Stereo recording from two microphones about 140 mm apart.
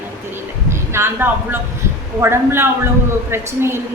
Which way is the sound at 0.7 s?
15° right (ahead or behind).